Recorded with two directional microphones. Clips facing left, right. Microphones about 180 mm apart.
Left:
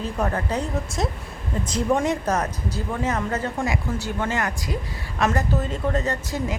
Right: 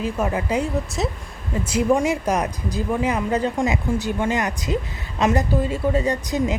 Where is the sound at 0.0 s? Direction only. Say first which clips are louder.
Right 2 dB; 10° right (ahead or behind).